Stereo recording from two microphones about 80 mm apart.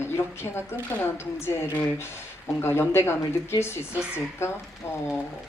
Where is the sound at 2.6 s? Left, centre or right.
Left.